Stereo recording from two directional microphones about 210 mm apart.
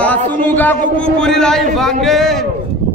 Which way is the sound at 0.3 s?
10° left (ahead or behind).